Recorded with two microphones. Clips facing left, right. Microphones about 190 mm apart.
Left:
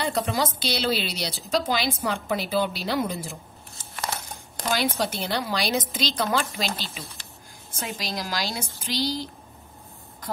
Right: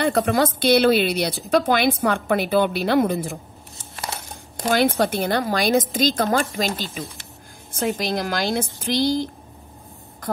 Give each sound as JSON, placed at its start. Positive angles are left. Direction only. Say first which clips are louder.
{"t": 0.0, "sound": "a woman's voice", "louder": "right 7 dB", "side_deg": -60}
{"t": 4.6, "sound": "a woman's voice", "louder": "right 7 dB", "side_deg": -55}